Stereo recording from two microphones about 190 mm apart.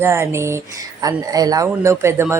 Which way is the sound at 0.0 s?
15° right (ahead or behind).